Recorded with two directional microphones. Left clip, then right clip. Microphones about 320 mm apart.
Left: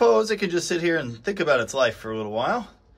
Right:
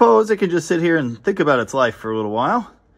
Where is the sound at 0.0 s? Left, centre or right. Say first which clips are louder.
Right 6 dB; centre.